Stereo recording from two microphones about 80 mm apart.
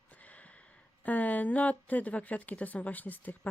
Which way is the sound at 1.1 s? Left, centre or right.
Centre.